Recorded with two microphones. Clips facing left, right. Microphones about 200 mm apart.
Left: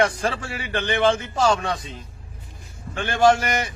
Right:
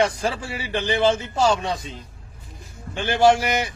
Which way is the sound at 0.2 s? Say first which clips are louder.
Even; 10° right (ahead or behind).